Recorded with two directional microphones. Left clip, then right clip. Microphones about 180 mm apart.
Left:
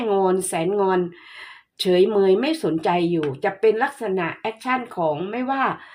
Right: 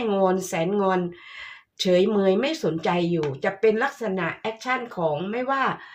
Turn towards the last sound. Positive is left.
turn(degrees=35)  # may be behind; listen again after turning